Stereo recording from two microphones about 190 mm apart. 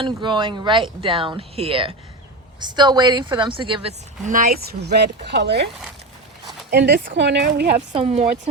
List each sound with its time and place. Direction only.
0.0 s speech: 25° right (ahead or behind)
4.3 s speech: 50° right (ahead or behind); by 5.6 s 65° right (ahead or behind)
6.7 s speech: 65° right (ahead or behind)
7.9 s speech: 30° right (ahead or behind)